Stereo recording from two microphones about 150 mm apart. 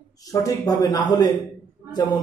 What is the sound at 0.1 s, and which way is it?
Speech, 25° left (ahead or behind).